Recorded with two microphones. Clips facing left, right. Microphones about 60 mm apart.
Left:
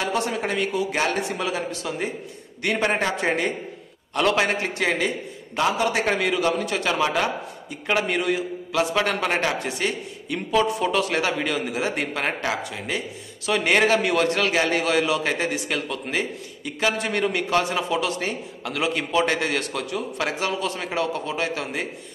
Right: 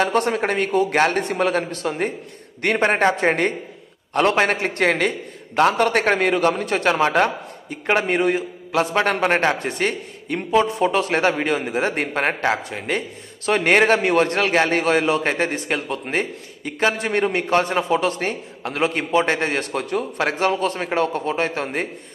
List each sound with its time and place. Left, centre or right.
0.0 s a man's voice: right
4.6 s a man's voice: right
6.1 s a man's voice: right
10.5 s a man's voice: right